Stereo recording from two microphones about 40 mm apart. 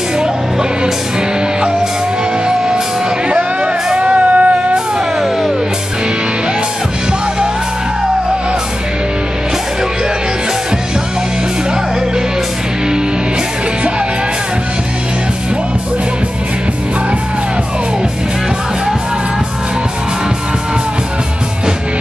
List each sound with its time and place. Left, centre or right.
0.2 s music: centre
2.4 s music: centre
4.3 s music: right